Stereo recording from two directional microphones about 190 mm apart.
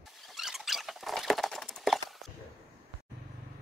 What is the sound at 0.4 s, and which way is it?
Rodents, centre (ahead or behind).